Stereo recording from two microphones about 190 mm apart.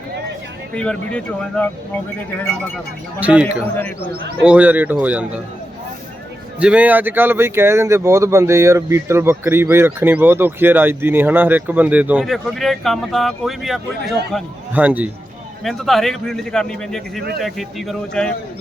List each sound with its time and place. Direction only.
0.8 s a man's voice: 5° left (ahead or behind)
3.2 s speech: 5° right (ahead or behind)
6.6 s a man's voice: 5° right (ahead or behind)